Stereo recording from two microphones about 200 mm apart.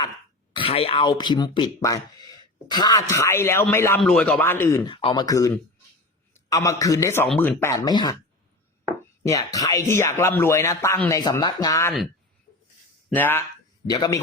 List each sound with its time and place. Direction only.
0.5 s speech: 30° left (ahead or behind); by 4.8 s 10° left (ahead or behind)
4.9 s a man's voice: 25° left (ahead or behind)
9.2 s speech: 15° left (ahead or behind)
13.1 s speech: 10° left (ahead or behind)